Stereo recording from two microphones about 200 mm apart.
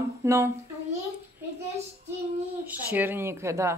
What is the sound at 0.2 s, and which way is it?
Humming, 15° right (ahead or behind).